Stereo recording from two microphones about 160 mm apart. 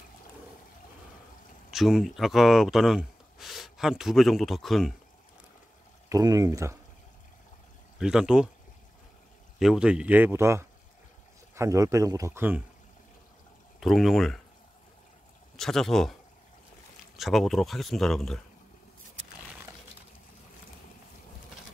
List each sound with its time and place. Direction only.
1.7 s speech: 5° right (ahead or behind)
6.0 s speech: 20° right (ahead or behind)
8.0 s speech: 5° right (ahead or behind)
9.6 s speech: 5° right (ahead or behind)
13.7 s speech: centre (ahead or behind)
15.5 s speech: 5° left (ahead or behind)
17.2 s speech: centre (ahead or behind)